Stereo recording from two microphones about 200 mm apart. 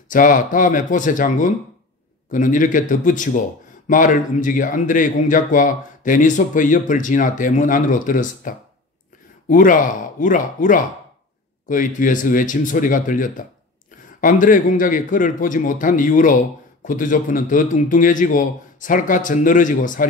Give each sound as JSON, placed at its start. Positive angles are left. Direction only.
{"t": 0.1, "sound": "a man's voice", "side_deg": 40}